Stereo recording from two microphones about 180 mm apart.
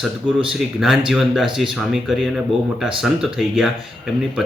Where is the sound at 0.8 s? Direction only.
Centre (ahead or behind).